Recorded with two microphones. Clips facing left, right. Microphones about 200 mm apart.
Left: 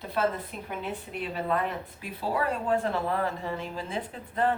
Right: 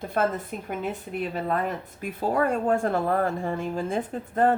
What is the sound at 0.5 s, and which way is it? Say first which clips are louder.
Speech: right 4 dB; 45° right (ahead or behind).